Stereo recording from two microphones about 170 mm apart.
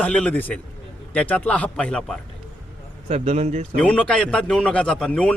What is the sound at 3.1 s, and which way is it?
Speech, 40° right (ahead or behind).